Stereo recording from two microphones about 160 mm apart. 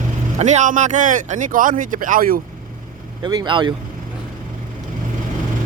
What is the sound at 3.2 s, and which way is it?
Speech, 25° right (ahead or behind).